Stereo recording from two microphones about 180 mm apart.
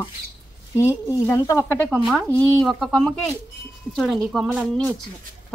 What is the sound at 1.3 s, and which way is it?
Speech, 20° left (ahead or behind).